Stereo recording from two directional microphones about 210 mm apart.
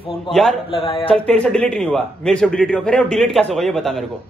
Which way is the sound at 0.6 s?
25° left (ahead or behind).